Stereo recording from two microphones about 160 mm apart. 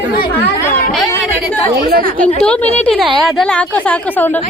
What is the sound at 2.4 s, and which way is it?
Speech, 10° left (ahead or behind).